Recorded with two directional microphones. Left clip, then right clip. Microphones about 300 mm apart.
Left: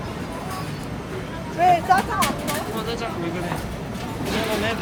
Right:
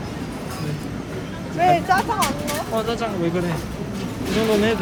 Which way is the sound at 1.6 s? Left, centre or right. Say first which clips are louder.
Even; right.